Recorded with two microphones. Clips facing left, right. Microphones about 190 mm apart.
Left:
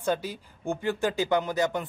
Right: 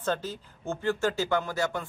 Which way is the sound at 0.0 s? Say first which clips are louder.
Left 2 dB; 10° left (ahead or behind).